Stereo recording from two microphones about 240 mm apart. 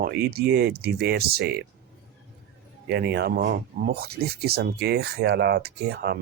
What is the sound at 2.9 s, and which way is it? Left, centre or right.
Speech, right.